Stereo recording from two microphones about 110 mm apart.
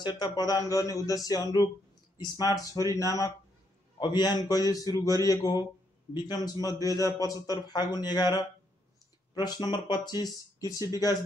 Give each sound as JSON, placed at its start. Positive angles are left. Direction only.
{"t": 0.0, "sound": "speech", "side_deg": 40}